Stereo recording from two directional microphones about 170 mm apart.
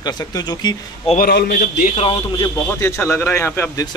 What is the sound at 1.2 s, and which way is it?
Speech, 65° left (ahead or behind).